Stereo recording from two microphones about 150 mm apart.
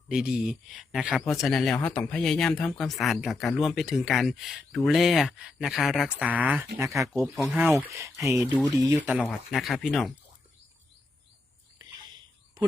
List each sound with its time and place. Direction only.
0.1 s speech: 5° right (ahead or behind); by 7.1 s 20° right (ahead or behind)
7.1 s speech: centre (ahead or behind); by 8.4 s 20° right (ahead or behind)
8.5 s speech: centre (ahead or behind)
8.8 s speech: 20° right (ahead or behind)
9.2 s speech: centre (ahead or behind)